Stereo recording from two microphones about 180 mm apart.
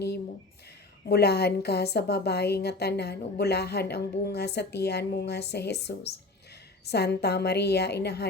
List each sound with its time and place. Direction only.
1.0 s a woman's voice: 65° left (ahead or behind)